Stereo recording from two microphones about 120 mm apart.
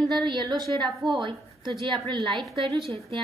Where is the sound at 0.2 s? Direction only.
40° right (ahead or behind).